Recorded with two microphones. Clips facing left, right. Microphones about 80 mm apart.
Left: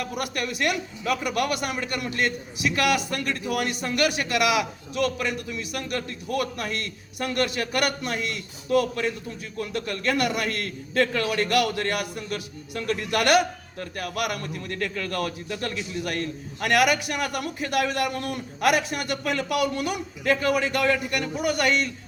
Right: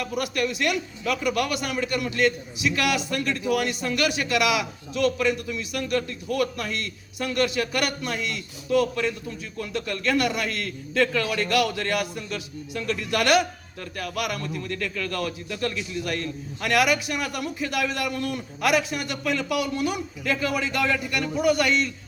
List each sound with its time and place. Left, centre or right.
0.2 s a man's voice: left
14.7 s a man's voice: left
16.6 s a man's voice: left